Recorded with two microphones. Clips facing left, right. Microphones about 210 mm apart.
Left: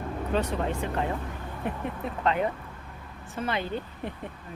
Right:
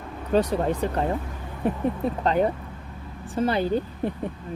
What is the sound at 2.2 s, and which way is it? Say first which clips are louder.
Speech: right 3 dB; 35° right (ahead or behind).